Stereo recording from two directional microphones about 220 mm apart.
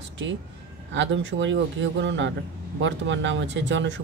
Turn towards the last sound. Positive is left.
turn(degrees=-55)  # may be behind; listen again after turning